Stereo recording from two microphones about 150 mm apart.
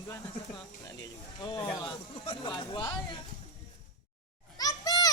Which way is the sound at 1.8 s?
35° left (ahead or behind).